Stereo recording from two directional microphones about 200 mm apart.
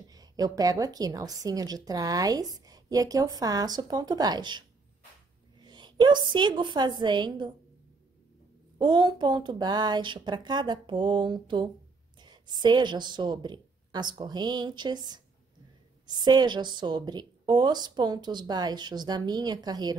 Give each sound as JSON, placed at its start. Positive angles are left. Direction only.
{"t": 0.1, "sound": "a woman's voice", "side_deg": -20}
{"t": 8.7, "sound": "a woman's voice", "side_deg": -20}